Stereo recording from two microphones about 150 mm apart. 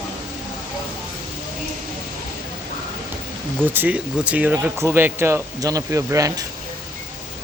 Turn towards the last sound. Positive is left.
turn(degrees=-20)  # may be behind; listen again after turning